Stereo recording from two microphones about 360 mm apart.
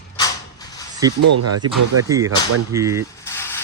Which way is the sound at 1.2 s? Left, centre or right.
Right.